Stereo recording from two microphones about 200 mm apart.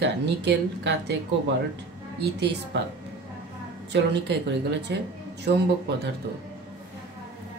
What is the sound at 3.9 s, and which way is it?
Speech, 60° right (ahead or behind).